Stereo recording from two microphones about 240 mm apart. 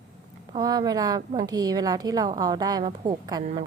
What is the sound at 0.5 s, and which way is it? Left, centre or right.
A woman's voice, centre.